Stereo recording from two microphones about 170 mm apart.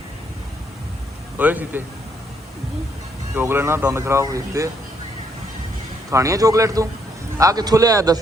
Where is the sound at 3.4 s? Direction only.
15° right (ahead or behind).